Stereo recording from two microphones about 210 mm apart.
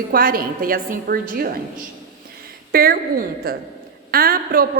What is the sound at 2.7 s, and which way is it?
Speech, 45° right (ahead or behind).